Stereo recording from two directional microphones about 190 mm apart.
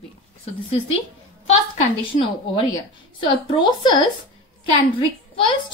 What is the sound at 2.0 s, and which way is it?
Speech, 30° left (ahead or behind).